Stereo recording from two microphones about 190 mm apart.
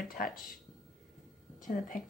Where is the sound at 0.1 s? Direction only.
50° left (ahead or behind).